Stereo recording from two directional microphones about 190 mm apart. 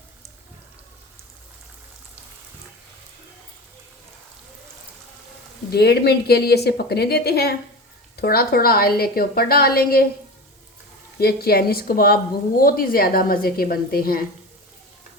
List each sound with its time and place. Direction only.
5.7 s a woman's voice: 60° left (ahead or behind)
11.2 s a woman's voice: 55° left (ahead or behind)